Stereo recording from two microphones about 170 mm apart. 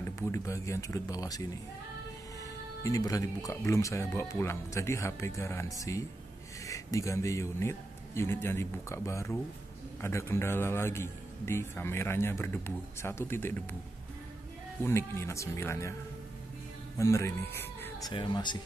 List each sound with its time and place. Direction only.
0.0 s speech: 15° left (ahead or behind)
2.8 s a man's voice: 20° left (ahead or behind)
14.8 s a man's voice: 15° left (ahead or behind)
17.0 s speech: 15° left (ahead or behind)
18.1 s speech: 25° left (ahead or behind)